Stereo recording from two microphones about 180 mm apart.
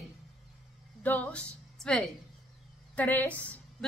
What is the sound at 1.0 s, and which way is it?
A woman's voice, 10° left (ahead or behind).